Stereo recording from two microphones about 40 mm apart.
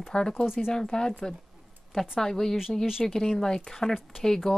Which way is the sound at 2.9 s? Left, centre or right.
Centre.